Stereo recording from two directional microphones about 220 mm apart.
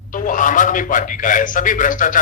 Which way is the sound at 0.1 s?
35° left (ahead or behind).